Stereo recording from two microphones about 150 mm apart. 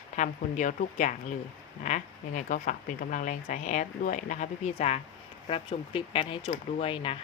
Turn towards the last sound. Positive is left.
turn(degrees=35)  # may be behind; listen again after turning